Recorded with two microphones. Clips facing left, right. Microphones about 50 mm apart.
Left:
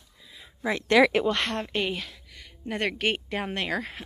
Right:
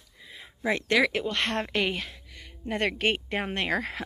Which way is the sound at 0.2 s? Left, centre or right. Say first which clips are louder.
Right 4 dB; right.